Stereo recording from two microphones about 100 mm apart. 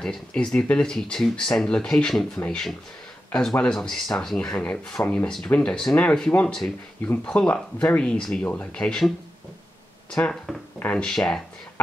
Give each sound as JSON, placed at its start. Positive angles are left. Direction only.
{"t": 0.0, "sound": "speech", "side_deg": 10}
{"t": 10.1, "sound": "speech", "side_deg": 5}
{"t": 10.8, "sound": "speech", "side_deg": 15}
{"t": 11.1, "sound": "speech", "side_deg": 5}